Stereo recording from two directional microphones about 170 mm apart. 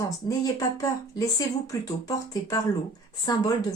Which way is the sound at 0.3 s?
20° left (ahead or behind).